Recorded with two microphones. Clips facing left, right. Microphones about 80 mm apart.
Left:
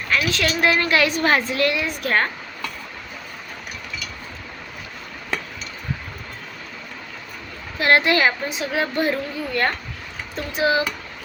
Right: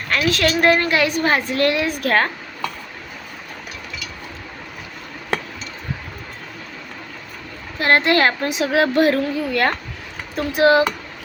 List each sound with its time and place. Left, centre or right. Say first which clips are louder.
0.1 s a woman's voice: right 3 dB; right
0.9 s a woman's voice: right 1 dB; right
1.5 s a woman's voice: right 3 dB; right
7.8 s a woman's voice: right 1 dB; right
8.4 s speech: right 6 dB; right